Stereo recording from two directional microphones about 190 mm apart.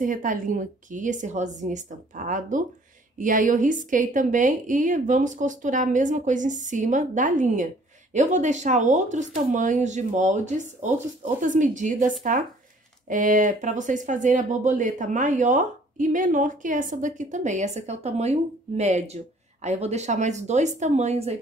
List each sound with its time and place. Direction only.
0.0 s a woman's voice: 45° right (ahead or behind)